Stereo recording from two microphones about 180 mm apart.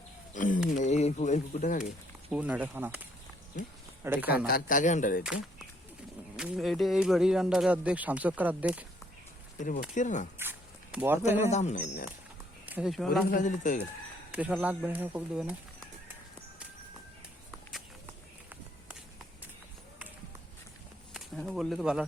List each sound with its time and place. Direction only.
0.3 s a sound: 45° left (ahead or behind)
2.3 s speech: 10° right (ahead or behind)
4.0 s speech: 10° right (ahead or behind)
4.4 s speech: 50° left (ahead or behind)
5.2 s speech: 5° right (ahead or behind)
9.6 s speech: 45° left (ahead or behind)
10.3 s a sound: 10° right (ahead or behind)
11.4 s speech: 40° left (ahead or behind)
12.6 s speech: 5° right (ahead or behind)
13.3 s speech: 45° left (ahead or behind)
14.6 s speech: 10° right (ahead or behind)
21.1 s a sound: centre (ahead or behind)